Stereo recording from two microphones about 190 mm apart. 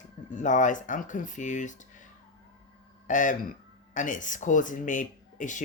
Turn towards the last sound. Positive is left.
turn(degrees=40)  # may be behind; listen again after turning